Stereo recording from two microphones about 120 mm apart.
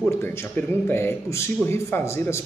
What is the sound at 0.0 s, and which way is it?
A man's voice, 20° left (ahead or behind).